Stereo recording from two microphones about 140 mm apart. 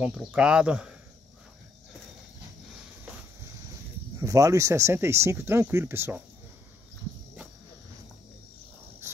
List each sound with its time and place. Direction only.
0.0 s speech: centre (ahead or behind)
4.2 s speech: 25° right (ahead or behind)